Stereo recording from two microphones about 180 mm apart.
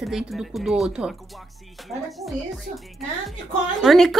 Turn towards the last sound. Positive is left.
turn(degrees=0)  # may be behind; listen again after turning